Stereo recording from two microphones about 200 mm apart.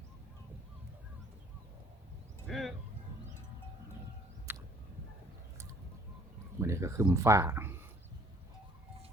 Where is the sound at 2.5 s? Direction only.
Centre (ahead or behind).